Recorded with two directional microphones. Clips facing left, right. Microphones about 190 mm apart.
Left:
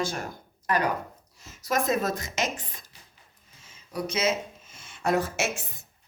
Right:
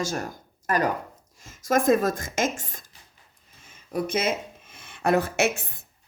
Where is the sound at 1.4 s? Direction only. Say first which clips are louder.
Right 5 dB; 50° right (ahead or behind).